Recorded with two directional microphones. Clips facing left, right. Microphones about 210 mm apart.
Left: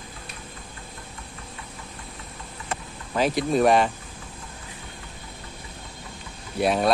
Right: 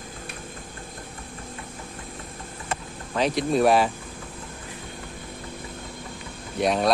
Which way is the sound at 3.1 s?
Centre (ahead or behind).